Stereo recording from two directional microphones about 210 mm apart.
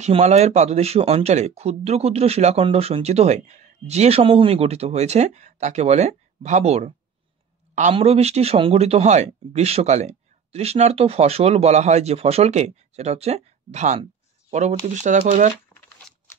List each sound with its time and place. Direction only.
0.0 s speech: 30° right (ahead or behind)